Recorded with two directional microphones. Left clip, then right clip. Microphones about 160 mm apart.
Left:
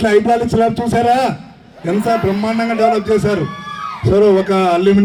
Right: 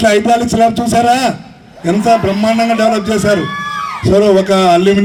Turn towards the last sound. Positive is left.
turn(degrees=-65)  # may be behind; listen again after turning